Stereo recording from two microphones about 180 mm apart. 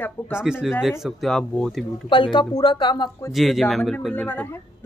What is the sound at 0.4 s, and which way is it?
A woman's voice, 5° right (ahead or behind).